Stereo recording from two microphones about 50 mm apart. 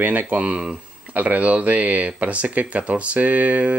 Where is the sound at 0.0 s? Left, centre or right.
Right.